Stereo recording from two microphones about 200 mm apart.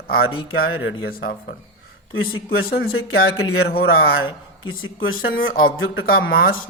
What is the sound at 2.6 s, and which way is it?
Speech, 50° left (ahead or behind).